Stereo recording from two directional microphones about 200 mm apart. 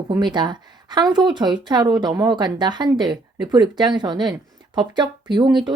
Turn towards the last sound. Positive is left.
turn(degrees=-20)  # may be behind; listen again after turning